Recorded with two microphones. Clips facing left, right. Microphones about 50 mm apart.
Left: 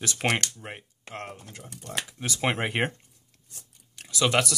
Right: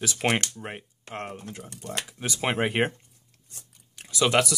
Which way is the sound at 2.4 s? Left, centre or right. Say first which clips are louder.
Right 2 dB; centre.